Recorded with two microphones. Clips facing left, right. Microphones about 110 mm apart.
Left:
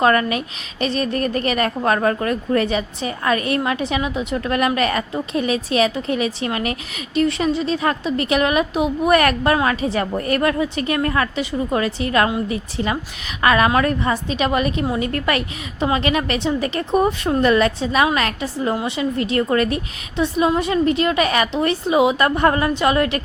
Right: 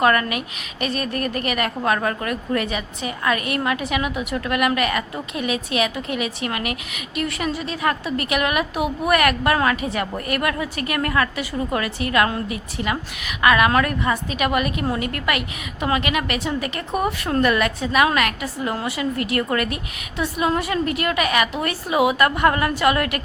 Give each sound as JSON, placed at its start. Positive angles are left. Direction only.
{"t": 0.0, "sound": "a woman's voice", "side_deg": 30}